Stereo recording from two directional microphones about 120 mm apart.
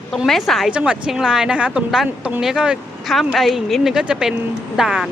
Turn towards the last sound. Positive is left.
turn(degrees=-5)  # may be behind; listen again after turning